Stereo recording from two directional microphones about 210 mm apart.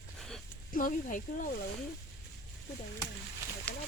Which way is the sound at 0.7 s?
40° left (ahead or behind).